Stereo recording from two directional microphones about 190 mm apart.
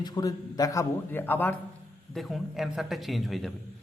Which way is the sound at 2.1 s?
Centre (ahead or behind).